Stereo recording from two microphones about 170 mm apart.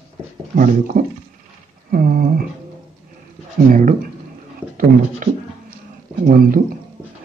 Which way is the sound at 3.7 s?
50° right (ahead or behind).